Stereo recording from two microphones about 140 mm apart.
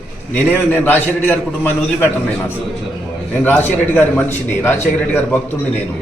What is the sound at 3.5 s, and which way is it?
A man's voice, 15° left (ahead or behind).